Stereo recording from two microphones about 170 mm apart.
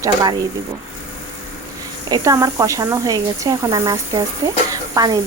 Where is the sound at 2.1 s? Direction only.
20° right (ahead or behind).